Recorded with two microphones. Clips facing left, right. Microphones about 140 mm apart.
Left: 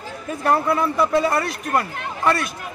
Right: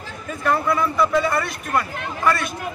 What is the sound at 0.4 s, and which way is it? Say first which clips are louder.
Speech: left 1 dB; 35° left (ahead or behind).